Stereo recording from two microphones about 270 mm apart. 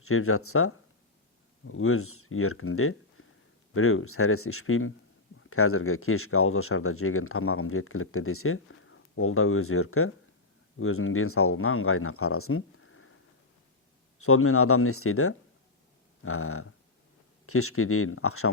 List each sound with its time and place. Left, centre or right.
0.0 s speech: left
14.2 s speech: left